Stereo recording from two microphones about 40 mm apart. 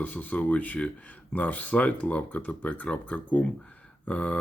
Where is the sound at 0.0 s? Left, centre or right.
Left.